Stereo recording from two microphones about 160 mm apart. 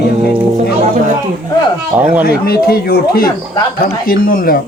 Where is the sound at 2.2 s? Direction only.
75° left (ahead or behind).